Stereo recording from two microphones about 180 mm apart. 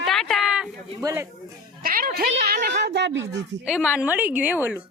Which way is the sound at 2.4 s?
60° right (ahead or behind).